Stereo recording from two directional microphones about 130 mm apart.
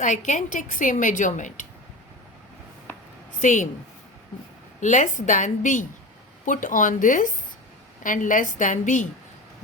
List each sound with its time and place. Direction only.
0.0 s a woman's voice: 70° left (ahead or behind)
3.4 s a woman's voice: 75° left (ahead or behind)
4.8 s a woman's voice: 70° left (ahead or behind)
6.4 s a woman's voice: 85° left